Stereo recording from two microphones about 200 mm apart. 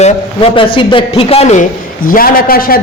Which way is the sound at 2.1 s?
45° left (ahead or behind).